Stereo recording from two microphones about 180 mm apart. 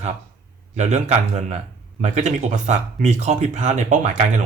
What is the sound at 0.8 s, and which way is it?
Speech, 40° right (ahead or behind).